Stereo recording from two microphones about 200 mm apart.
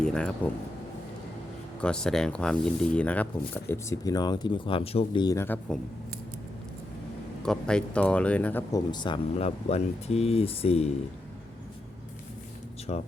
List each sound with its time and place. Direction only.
0.0 s speech: 5° left (ahead or behind)
1.8 s speech: 5° left (ahead or behind)
7.4 s speech: 5° left (ahead or behind)
8.9 s speech: 25° left (ahead or behind)
12.9 s speech: 35° left (ahead or behind)